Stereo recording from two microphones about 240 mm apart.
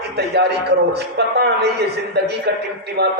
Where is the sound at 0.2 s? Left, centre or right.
Right.